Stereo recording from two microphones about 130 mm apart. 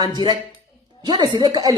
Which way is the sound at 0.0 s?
30° right (ahead or behind).